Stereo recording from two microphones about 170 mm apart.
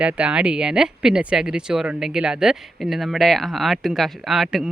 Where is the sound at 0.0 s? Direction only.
5° right (ahead or behind).